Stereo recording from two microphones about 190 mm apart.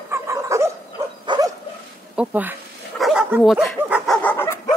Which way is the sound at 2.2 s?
10° right (ahead or behind).